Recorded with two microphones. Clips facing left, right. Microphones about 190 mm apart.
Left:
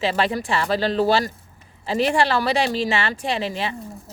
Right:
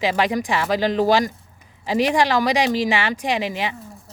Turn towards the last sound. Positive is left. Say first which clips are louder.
# right 2 dB
turn(degrees=-15)  # may be behind; listen again after turning